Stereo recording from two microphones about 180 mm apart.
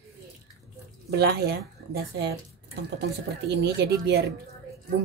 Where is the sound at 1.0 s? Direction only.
60° right (ahead or behind).